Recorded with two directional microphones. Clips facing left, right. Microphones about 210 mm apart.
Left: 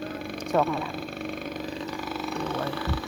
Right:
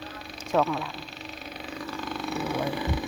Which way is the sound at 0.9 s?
50° left (ahead or behind).